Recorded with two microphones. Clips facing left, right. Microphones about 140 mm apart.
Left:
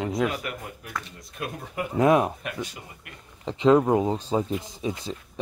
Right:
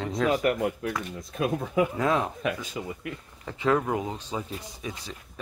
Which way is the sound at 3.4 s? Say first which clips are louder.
Left 6 dB; 20° left (ahead or behind).